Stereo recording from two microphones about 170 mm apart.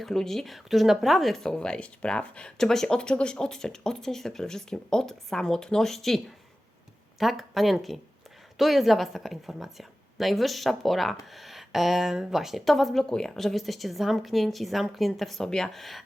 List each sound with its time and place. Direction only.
0.0 s a woman's voice: centre (ahead or behind)